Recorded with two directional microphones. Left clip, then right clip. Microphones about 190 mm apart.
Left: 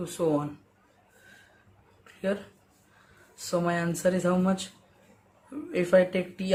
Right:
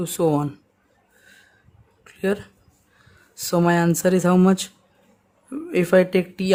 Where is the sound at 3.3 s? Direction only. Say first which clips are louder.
Right 8 dB; 65° right (ahead or behind).